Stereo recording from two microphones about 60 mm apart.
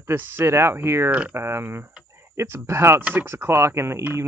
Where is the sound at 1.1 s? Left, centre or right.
Right.